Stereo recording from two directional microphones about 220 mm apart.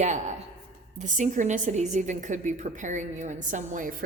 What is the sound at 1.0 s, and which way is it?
A woman's voice, 35° right (ahead or behind).